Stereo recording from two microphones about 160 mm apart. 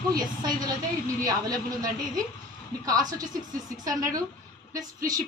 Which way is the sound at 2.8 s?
25° right (ahead or behind).